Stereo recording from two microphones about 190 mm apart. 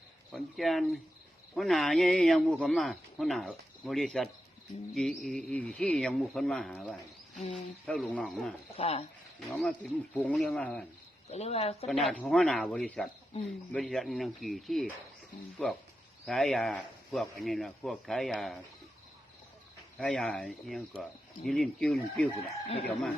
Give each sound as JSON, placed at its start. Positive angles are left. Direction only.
{"t": 0.3, "sound": "a man's voice", "side_deg": 0}
{"t": 8.7, "sound": "speech", "side_deg": 30}
{"t": 9.5, "sound": "a man's voice", "side_deg": 0}
{"t": 11.3, "sound": "speech", "side_deg": 35}
{"t": 11.9, "sound": "a man's voice", "side_deg": 0}
{"t": 20.0, "sound": "a man's voice", "side_deg": 5}